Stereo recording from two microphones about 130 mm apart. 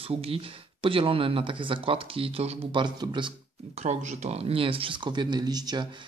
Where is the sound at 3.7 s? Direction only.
65° right (ahead or behind); by 5.9 s 30° right (ahead or behind).